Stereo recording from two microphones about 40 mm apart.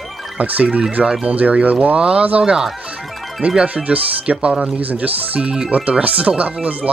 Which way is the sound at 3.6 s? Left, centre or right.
Right.